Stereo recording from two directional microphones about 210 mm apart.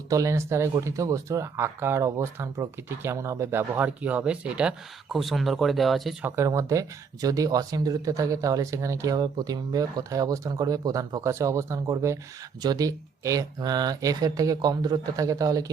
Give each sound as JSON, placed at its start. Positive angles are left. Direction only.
{"t": 0.1, "sound": "speech", "side_deg": -15}
{"t": 6.3, "sound": "speech", "side_deg": -15}